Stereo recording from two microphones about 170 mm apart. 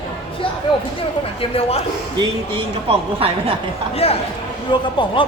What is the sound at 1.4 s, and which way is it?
Speech, 35° left (ahead or behind).